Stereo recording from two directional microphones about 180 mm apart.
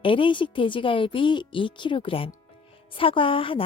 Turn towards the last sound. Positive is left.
turn(degrees=30)  # may be behind; listen again after turning